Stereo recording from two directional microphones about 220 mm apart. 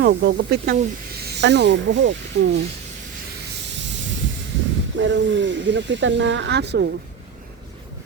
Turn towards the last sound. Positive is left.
turn(degrees=-50)  # may be behind; listen again after turning